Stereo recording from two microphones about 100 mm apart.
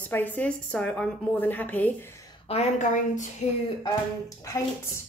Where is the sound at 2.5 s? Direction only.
75° left (ahead or behind).